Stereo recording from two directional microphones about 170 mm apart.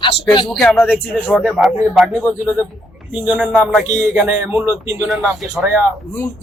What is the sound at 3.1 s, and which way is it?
Speech, 10° right (ahead or behind).